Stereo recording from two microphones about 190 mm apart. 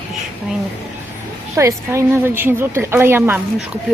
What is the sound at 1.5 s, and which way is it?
A woman's voice, 15° right (ahead or behind).